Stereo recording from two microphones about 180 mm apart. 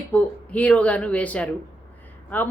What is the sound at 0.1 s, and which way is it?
A woman's voice, 10° left (ahead or behind).